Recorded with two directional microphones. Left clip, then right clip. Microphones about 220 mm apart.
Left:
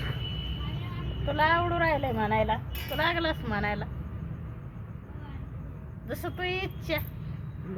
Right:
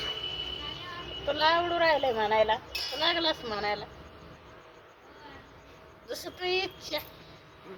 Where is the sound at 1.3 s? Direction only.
20° right (ahead or behind).